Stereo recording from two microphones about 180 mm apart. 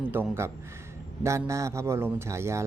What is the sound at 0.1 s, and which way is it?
Speech, 15° right (ahead or behind).